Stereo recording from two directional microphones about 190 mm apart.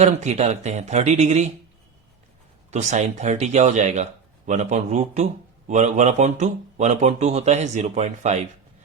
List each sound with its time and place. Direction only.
0.0 s speech: 35° right (ahead or behind)
2.6 s speech: 40° right (ahead or behind)